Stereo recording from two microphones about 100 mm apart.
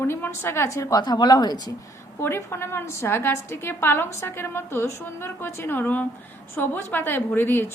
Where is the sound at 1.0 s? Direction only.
45° left (ahead or behind).